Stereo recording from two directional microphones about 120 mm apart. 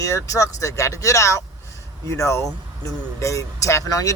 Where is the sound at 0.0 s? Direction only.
25° left (ahead or behind).